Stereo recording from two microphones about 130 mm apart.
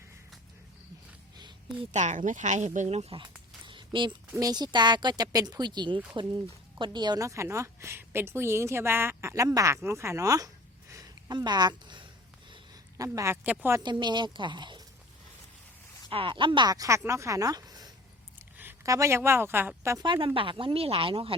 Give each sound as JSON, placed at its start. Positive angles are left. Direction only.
{"t": 1.4, "sound": "a sound", "side_deg": -35}
{"t": 1.9, "sound": "speech", "side_deg": -65}
{"t": 3.7, "sound": "a sound", "side_deg": -40}
{"t": 4.4, "sound": "a woman's voice", "side_deg": -30}
{"t": 13.8, "sound": "speech", "side_deg": -35}
{"t": 16.0, "sound": "a woman's voice", "side_deg": -40}
{"t": 18.3, "sound": "a woman's voice", "side_deg": -15}
{"t": 20.0, "sound": "speech", "side_deg": -40}